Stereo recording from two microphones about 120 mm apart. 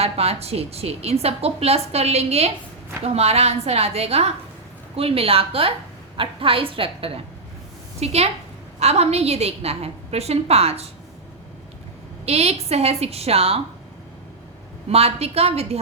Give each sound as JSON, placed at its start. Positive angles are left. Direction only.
{"t": 0.0, "sound": "a woman's voice", "side_deg": -60}
{"t": 7.9, "sound": "a woman's voice", "side_deg": -60}
{"t": 12.2, "sound": "a woman's voice", "side_deg": -60}
{"t": 14.8, "sound": "a woman's voice", "side_deg": -60}